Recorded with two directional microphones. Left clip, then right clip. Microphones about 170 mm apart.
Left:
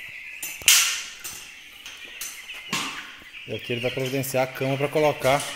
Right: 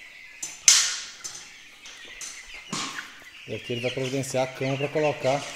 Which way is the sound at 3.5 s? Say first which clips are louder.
Left 2 dB; centre (ahead or behind).